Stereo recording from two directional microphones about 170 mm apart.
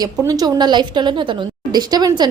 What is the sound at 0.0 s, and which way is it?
A woman's voice, 20° right (ahead or behind).